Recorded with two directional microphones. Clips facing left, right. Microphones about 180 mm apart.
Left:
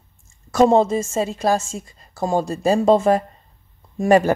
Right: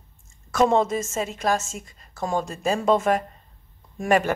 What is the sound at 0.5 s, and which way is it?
Speech, 30° left (ahead or behind).